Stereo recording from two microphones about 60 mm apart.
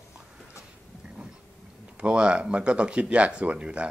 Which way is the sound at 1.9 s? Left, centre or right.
Centre.